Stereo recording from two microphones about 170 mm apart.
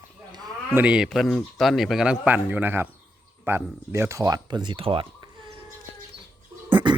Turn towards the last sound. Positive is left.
turn(degrees=-30)  # may be behind; listen again after turning